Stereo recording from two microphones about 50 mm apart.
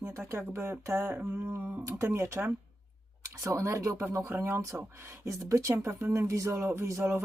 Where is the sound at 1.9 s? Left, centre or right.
Right.